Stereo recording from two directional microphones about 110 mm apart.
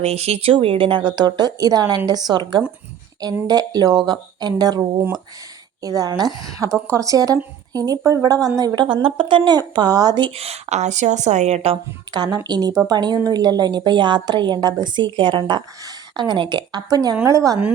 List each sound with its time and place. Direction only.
0.0 s speech: 75° right (ahead or behind)
0.5 s a woman's voice: 55° right (ahead or behind)
10.3 s a woman's voice: 70° right (ahead or behind)
12.1 s a woman's voice: 40° right (ahead or behind)